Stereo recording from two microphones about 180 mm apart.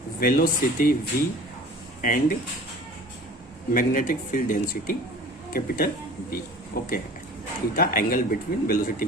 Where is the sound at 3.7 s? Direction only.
45° left (ahead or behind).